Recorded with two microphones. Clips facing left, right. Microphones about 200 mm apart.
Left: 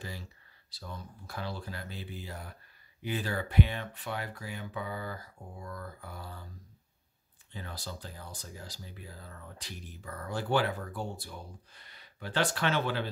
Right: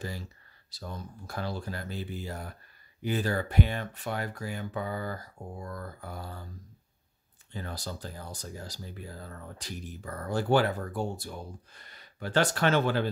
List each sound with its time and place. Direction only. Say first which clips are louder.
0.7 s speech: right 4 dB; 45° right (ahead or behind)
7.5 s speech: right 4 dB; 45° right (ahead or behind)